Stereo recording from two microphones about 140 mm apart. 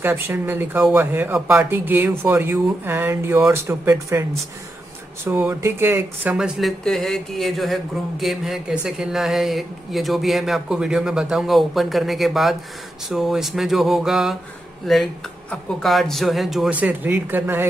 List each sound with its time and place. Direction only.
0.0 s speech: 15° right (ahead or behind)
6.3 s speech: 5° right (ahead or behind)